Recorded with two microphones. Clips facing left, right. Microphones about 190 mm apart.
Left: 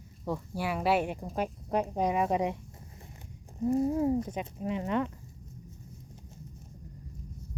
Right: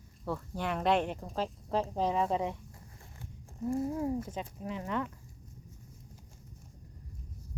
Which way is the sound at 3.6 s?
20° left (ahead or behind).